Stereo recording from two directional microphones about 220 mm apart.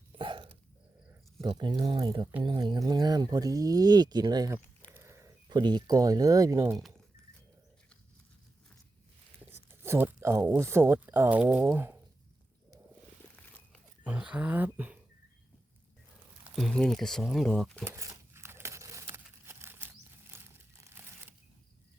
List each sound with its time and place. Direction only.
0.2 s a sound: 25° right (ahead or behind)
1.4 s speech: 20° right (ahead or behind)
9.6 s speech: 10° right (ahead or behind)
14.0 s speech: 5° right (ahead or behind)
16.4 s speech: centre (ahead or behind)
17.8 s tearing: 10° right (ahead or behind)
20.3 s crumpling: 10° right (ahead or behind)